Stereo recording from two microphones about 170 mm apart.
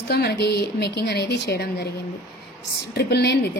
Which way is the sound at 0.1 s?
75° left (ahead or behind).